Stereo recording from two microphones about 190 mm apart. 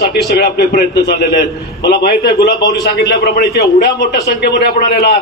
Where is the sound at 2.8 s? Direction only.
55° left (ahead or behind).